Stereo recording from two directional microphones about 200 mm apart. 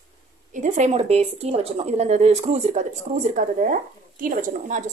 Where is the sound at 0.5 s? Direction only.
35° right (ahead or behind).